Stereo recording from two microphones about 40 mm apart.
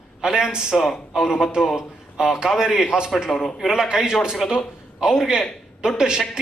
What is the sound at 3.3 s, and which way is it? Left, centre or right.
Speech, centre.